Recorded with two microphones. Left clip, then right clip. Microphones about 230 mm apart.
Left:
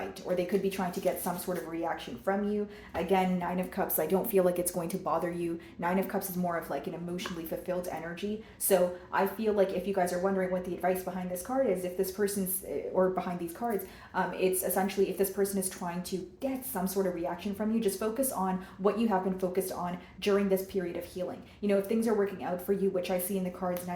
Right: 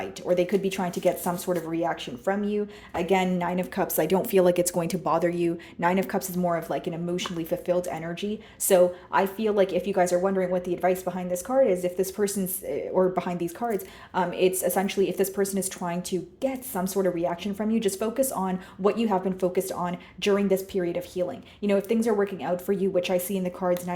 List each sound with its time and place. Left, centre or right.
0.0 s speech: right